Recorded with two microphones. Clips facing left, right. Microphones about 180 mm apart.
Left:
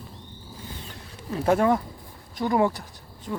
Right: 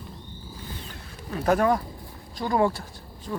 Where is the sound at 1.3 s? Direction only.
25° left (ahead or behind).